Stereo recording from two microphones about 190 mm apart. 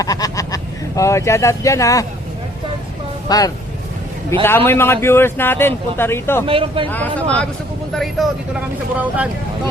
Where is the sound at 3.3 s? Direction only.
20° left (ahead or behind).